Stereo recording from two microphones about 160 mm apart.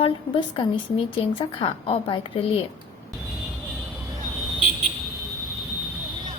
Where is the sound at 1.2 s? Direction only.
35° left (ahead or behind).